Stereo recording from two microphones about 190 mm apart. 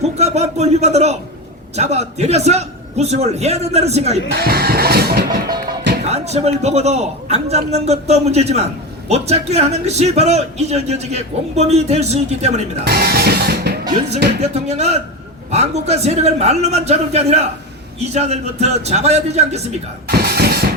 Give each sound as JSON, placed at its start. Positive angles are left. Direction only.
{"t": 0.2, "sound": "a man's voice", "side_deg": -35}
{"t": 4.3, "sound": "speech", "side_deg": -55}
{"t": 6.1, "sound": "a man's voice", "side_deg": -35}
{"t": 12.8, "sound": "music", "side_deg": -55}
{"t": 14.4, "sound": "a man's voice", "side_deg": -35}
{"t": 20.1, "sound": "speech", "side_deg": -55}